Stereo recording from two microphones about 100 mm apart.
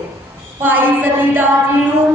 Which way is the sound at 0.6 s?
20° right (ahead or behind).